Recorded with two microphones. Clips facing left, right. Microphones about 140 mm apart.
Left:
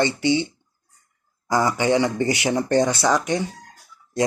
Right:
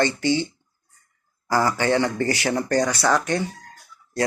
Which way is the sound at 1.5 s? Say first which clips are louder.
Left 1 dB; 15° left (ahead or behind).